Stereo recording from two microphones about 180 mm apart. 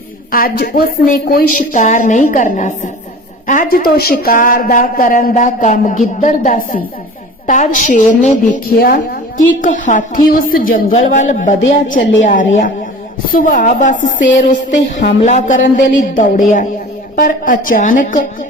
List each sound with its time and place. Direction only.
0.3 s speech: 55° left (ahead or behind)
14.8 s a sound: 75° left (ahead or behind)
15.2 s speech: 45° left (ahead or behind)